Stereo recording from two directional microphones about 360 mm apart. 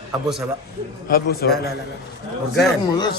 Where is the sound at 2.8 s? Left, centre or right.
Centre.